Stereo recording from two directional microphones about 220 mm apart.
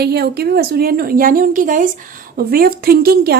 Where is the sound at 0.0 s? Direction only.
45° right (ahead or behind).